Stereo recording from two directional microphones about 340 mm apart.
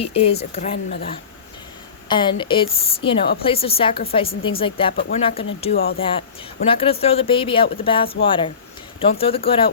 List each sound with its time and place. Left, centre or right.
0.0 s speech: centre
2.0 s speech: centre
4.9 s speech: left
5.2 s speech: centre